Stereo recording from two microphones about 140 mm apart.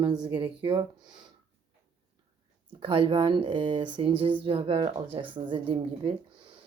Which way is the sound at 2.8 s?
40° right (ahead or behind).